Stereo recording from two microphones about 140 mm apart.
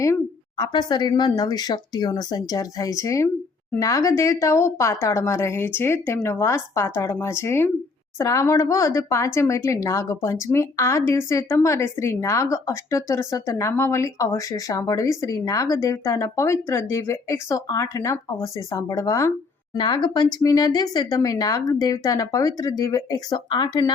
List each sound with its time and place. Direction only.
0.0 s speech: 25° left (ahead or behind)